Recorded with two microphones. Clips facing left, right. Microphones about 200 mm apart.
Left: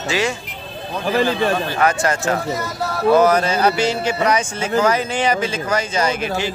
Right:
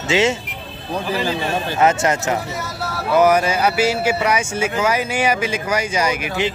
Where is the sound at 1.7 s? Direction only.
20° right (ahead or behind).